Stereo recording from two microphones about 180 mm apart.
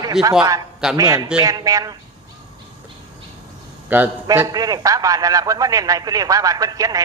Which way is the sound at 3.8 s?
10° right (ahead or behind).